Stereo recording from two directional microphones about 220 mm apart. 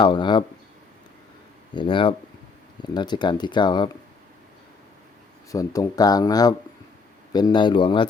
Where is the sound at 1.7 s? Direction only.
20° left (ahead or behind).